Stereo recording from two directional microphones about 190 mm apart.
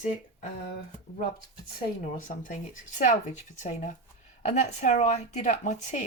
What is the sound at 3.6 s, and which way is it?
Speech, 35° left (ahead or behind).